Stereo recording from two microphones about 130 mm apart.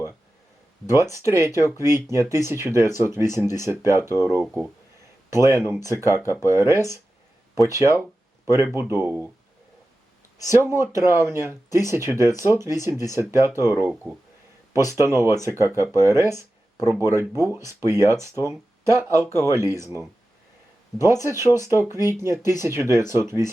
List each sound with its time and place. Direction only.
0.9 s speech: 20° right (ahead or behind)
8.4 s speech: 20° right (ahead or behind)
10.4 s speech: 20° right (ahead or behind)
15.0 s speech: 20° right (ahead or behind)
21.0 s speech: 20° right (ahead or behind)